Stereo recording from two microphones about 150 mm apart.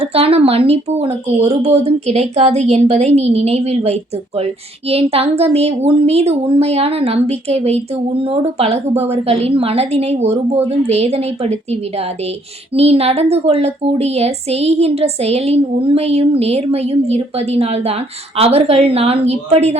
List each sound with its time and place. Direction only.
0.0 s speech: 40° right (ahead or behind)